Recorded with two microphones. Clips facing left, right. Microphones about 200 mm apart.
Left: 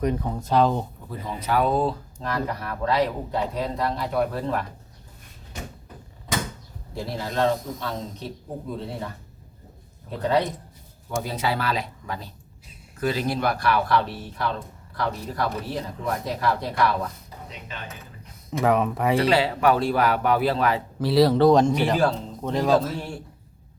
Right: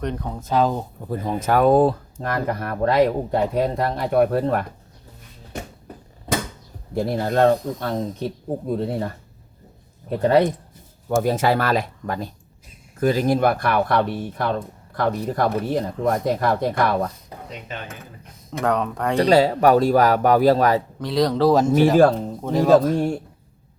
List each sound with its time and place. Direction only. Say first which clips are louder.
0.0 s speech: left 2 dB; 5° left (ahead or behind)
1.0 s speech: right 7 dB; 45° right (ahead or behind)
6.9 s speech: right 8 dB; 55° right (ahead or behind)
10.1 s speech: right 6 dB; 55° right (ahead or behind)
18.6 s speech: left 1 dB; 5° left (ahead or behind)
19.1 s speech: right 7 dB; 40° right (ahead or behind)
21.0 s speech: left 3 dB; 5° left (ahead or behind)